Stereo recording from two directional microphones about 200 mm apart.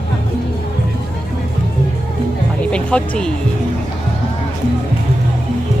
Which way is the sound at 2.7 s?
5° left (ahead or behind).